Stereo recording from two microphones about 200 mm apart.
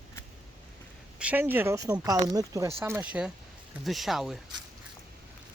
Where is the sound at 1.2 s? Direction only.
10° right (ahead or behind).